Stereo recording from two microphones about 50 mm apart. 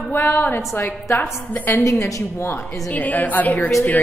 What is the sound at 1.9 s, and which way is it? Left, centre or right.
Speech, left.